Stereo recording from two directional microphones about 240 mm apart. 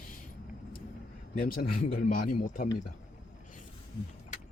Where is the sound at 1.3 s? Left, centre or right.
Left.